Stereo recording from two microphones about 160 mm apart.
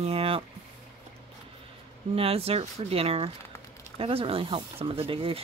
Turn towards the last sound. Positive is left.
turn(degrees=-35)  # may be behind; listen again after turning